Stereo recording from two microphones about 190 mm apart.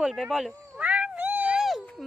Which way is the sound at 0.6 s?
10° right (ahead or behind).